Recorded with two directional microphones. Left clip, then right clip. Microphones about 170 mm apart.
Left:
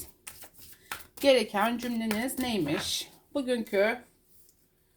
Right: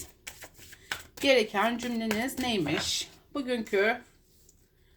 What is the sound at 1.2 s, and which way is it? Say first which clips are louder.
Speech: left 1 dB; 30° left (ahead or behind).